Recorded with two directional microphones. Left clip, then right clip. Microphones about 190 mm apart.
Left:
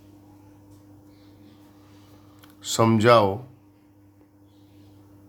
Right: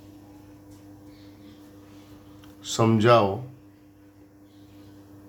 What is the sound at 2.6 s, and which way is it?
Speech, 40° left (ahead or behind).